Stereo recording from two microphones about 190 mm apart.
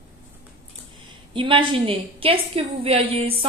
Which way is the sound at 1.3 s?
25° right (ahead or behind).